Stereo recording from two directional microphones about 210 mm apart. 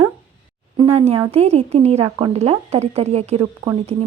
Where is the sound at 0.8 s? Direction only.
30° right (ahead or behind).